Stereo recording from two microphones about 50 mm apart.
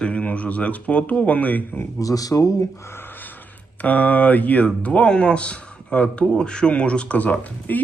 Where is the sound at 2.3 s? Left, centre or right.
Left.